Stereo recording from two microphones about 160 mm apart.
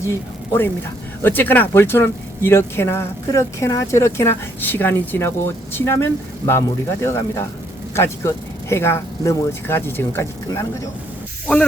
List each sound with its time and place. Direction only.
0.0 s speech: 15° left (ahead or behind)